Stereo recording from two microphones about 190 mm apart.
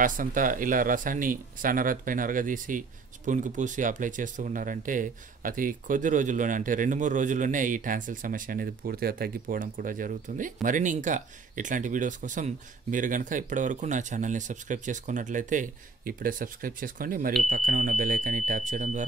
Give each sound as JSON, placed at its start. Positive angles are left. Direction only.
{"t": 0.0, "sound": "speech", "side_deg": -45}